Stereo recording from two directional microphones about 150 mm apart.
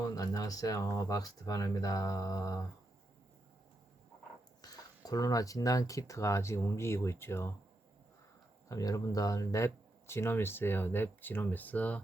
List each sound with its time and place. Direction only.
0.0 s speech: 25° left (ahead or behind)
4.6 s speech: 25° left (ahead or behind)
8.7 s speech: 20° left (ahead or behind)